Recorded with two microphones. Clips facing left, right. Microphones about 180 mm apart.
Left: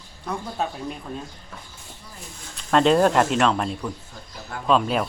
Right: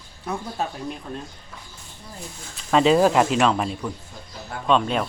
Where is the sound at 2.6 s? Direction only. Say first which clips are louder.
Right 1 dB; centre (ahead or behind).